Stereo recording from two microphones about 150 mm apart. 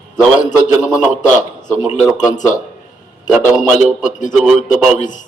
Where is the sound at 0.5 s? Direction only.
5° right (ahead or behind).